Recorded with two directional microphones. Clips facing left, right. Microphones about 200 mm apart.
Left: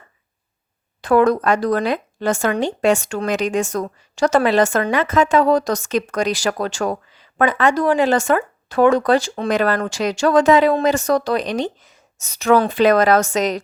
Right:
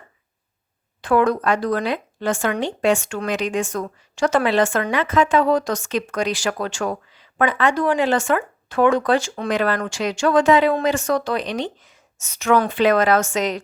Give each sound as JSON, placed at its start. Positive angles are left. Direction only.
{"t": 1.0, "sound": "speech", "side_deg": 40}